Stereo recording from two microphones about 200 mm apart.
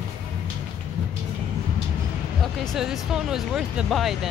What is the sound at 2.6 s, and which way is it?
Speech, centre (ahead or behind).